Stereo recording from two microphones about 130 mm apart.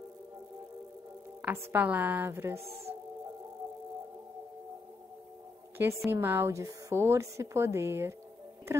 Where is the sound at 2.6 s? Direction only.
50° right (ahead or behind).